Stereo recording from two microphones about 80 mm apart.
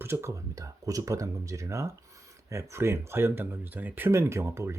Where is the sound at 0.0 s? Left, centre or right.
Right.